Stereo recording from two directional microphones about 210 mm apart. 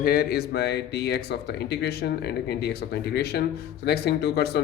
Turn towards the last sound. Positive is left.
turn(degrees=50)  # may be behind; listen again after turning